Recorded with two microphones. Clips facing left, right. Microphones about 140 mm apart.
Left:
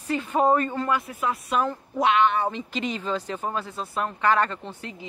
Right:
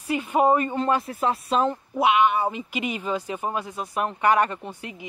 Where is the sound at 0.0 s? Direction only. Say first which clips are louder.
Right 1 dB; 10° right (ahead or behind).